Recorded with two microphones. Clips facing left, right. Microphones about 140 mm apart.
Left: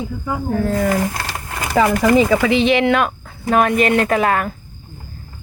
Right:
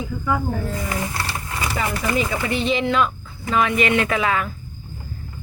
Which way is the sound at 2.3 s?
90° left.